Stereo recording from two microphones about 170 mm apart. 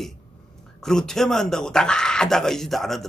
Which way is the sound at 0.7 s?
5° left (ahead or behind).